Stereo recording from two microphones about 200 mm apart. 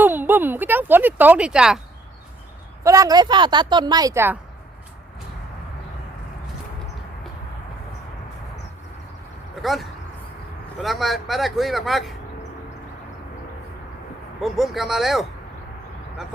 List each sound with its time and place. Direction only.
0.0 s speech: 10° right (ahead or behind)
2.8 s speech: 15° right (ahead or behind)
9.6 s speech: centre (ahead or behind)
14.4 s speech: centre (ahead or behind)